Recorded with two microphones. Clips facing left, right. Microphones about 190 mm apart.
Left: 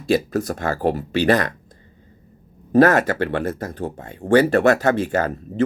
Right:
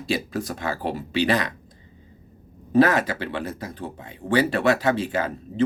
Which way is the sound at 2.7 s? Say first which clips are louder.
Left 4 dB; 50° left (ahead or behind).